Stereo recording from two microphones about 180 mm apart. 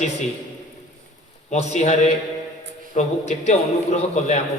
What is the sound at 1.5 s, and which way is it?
A man's voice, 40° left (ahead or behind).